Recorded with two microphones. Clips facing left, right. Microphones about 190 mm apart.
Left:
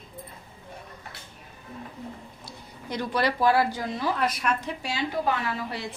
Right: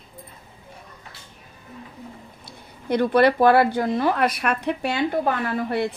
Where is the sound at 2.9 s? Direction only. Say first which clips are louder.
Right 9 dB; 55° right (ahead or behind).